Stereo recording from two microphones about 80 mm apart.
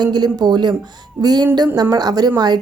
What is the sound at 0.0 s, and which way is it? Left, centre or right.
Speech, right.